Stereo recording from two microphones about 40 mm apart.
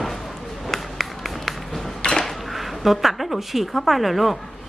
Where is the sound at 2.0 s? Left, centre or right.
Left.